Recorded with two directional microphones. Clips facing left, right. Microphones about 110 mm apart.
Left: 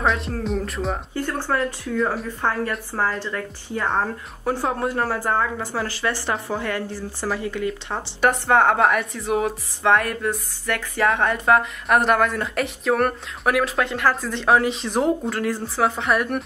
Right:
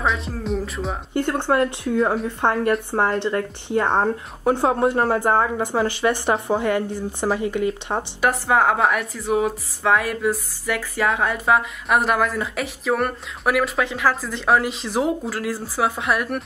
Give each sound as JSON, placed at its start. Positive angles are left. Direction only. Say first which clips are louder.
{"t": 0.0, "sound": "a woman's voice", "louder": "left 1 dB", "side_deg": 0}
{"t": 1.1, "sound": "a woman's voice", "louder": "right 7 dB", "side_deg": -20}
{"t": 1.6, "sound": "speech", "louder": "right 4 dB", "side_deg": -35}
{"t": 2.4, "sound": "a woman's voice", "louder": "right 5 dB", "side_deg": -25}
{"t": 8.2, "sound": "a woman's voice", "louder": "left 2 dB", "side_deg": 0}